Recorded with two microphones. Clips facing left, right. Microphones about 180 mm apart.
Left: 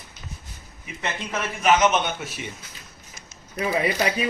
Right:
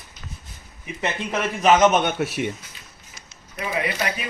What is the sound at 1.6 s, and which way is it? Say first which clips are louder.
Speech: right 3 dB; 40° right (ahead or behind).